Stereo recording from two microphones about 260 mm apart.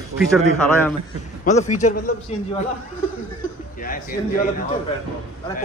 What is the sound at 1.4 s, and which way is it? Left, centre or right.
Speech, left.